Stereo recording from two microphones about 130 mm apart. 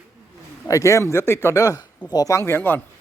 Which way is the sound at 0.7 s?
25° left (ahead or behind).